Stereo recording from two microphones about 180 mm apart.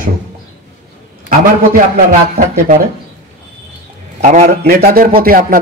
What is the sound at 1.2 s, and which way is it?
A man's voice, 45° right (ahead or behind).